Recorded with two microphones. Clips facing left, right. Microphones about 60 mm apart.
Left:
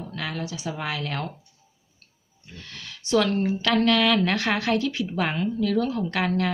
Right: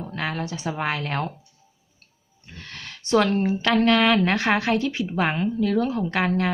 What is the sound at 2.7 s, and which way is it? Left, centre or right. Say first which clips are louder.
A woman's voice: right 2 dB; right.